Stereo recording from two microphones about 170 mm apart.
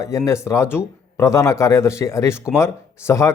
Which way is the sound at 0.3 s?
15° left (ahead or behind).